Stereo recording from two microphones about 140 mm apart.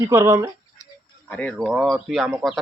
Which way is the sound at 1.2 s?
5° left (ahead or behind).